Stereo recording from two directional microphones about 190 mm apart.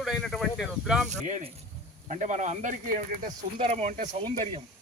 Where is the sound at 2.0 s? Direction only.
40° right (ahead or behind).